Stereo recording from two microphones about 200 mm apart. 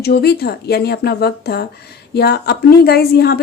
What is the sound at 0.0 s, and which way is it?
A woman's voice, 55° left (ahead or behind).